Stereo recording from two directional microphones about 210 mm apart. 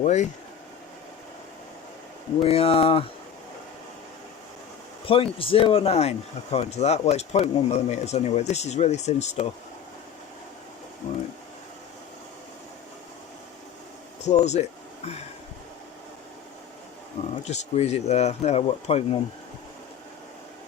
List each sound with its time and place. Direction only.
0.0 s speech: 35° left (ahead or behind)
2.4 s speech: 30° left (ahead or behind)
5.0 s speech: 25° left (ahead or behind)
11.0 s speech: 35° left (ahead or behind)
14.3 s speech: 35° left (ahead or behind)
17.4 s speech: 30° left (ahead or behind)